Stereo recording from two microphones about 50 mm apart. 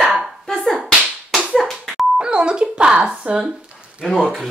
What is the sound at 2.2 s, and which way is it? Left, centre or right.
Speech, centre.